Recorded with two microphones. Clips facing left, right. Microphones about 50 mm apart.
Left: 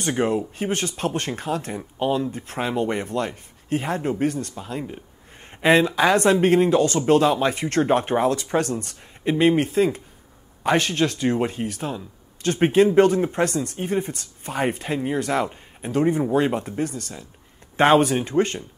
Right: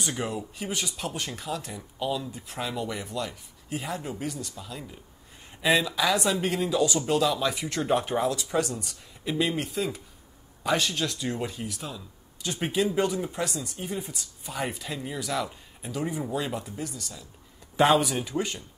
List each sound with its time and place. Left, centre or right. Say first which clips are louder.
0.1 s speech: left 10 dB; left
9.3 s speech: left 9 dB; left